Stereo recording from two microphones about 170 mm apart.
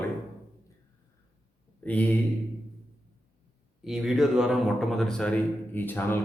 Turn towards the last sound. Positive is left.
turn(degrees=10)  # may be behind; listen again after turning